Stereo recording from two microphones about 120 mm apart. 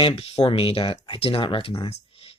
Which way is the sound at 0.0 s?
55° left (ahead or behind).